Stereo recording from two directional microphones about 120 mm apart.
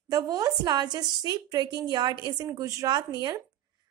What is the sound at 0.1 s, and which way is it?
A woman's voice, 30° right (ahead or behind).